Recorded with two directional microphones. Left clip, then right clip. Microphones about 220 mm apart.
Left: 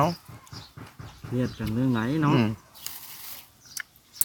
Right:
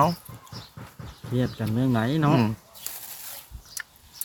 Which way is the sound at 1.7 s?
30° right (ahead or behind).